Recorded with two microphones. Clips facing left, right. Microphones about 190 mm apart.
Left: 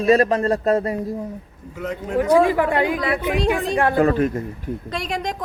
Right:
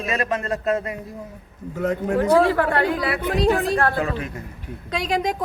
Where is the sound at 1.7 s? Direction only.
45° right (ahead or behind).